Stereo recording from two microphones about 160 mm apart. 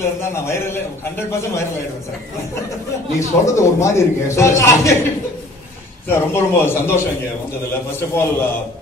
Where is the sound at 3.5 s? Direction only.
20° left (ahead or behind).